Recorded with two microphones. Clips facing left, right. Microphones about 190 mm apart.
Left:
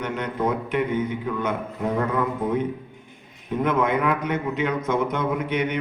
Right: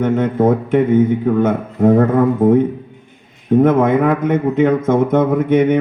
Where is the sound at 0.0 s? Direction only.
50° right (ahead or behind).